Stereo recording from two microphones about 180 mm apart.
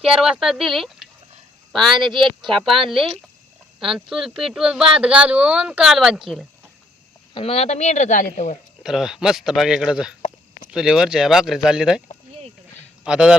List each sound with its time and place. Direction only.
0.0 s speech: 5° right (ahead or behind)
7.3 s speech: 35° left (ahead or behind)
8.8 s speech: centre (ahead or behind)
13.1 s speech: 5° right (ahead or behind)